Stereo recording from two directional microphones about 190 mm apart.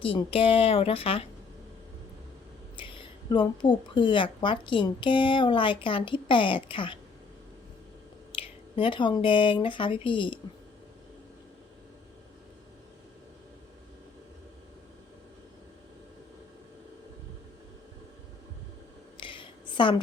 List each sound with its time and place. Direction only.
0.0 s speech: 30° left (ahead or behind)
2.7 s speech: 25° left (ahead or behind)
8.3 s speech: 30° left (ahead or behind)
19.1 s a sound: 25° left (ahead or behind)